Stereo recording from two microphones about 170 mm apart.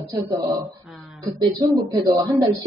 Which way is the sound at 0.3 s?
20° right (ahead or behind).